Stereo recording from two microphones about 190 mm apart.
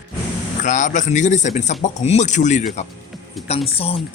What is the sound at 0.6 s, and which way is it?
Speech, 40° left (ahead or behind).